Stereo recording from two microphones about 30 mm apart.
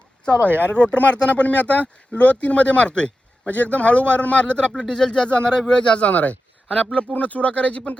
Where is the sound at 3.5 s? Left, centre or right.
Left.